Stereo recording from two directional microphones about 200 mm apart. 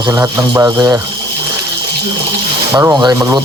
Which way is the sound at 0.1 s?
10° right (ahead or behind).